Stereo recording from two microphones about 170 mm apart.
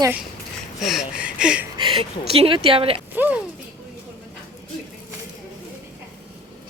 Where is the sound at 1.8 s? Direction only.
30° right (ahead or behind).